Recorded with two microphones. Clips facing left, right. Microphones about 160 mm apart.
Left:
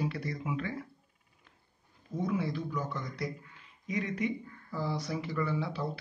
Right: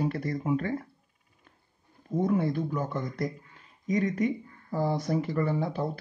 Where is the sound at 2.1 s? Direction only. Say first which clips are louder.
Right 6 dB; 50° right (ahead or behind).